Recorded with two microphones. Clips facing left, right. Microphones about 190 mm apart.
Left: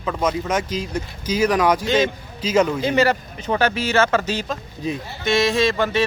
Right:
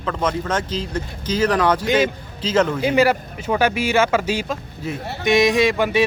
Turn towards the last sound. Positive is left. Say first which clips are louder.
# right 2 dB
turn(degrees=-15)  # may be behind; listen again after turning